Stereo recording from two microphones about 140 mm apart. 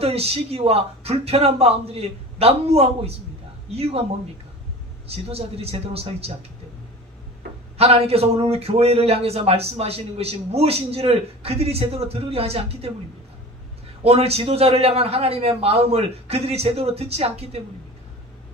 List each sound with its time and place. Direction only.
0.0 s a man's voice: 45° right (ahead or behind)
5.0 s a man's voice: 45° right (ahead or behind)
7.7 s a man's voice: 45° right (ahead or behind)
14.0 s a man's voice: 45° right (ahead or behind)